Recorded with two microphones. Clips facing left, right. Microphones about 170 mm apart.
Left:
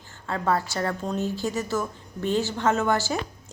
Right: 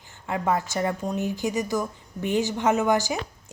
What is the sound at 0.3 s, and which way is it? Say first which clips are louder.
A woman's voice: even; 15° right (ahead or behind).